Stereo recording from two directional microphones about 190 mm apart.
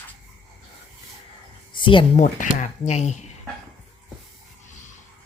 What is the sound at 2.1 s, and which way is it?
Speech, 40° left (ahead or behind).